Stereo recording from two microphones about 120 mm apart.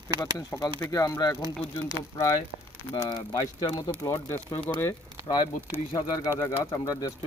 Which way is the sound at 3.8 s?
30° left (ahead or behind).